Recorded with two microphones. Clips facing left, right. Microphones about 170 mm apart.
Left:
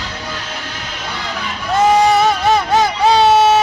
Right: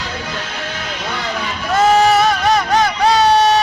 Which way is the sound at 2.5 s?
25° left (ahead or behind).